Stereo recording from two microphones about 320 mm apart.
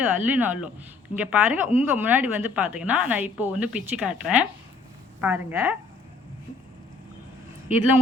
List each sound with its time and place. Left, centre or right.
0.0 s a woman's voice: centre